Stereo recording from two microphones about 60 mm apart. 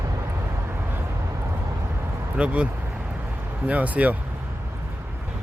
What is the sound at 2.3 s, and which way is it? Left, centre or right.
Speech, centre.